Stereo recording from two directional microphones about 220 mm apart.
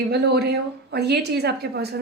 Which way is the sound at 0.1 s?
50° right (ahead or behind).